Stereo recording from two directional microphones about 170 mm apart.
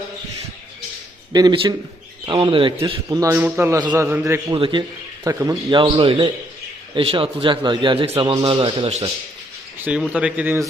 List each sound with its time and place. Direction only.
1.3 s a man's voice: 25° right (ahead or behind)
3.1 s a man's voice: 20° right (ahead or behind)
4.5 s speech: 30° right (ahead or behind)
5.7 s a man's voice: 30° right (ahead or behind)
9.7 s a man's voice: 10° right (ahead or behind)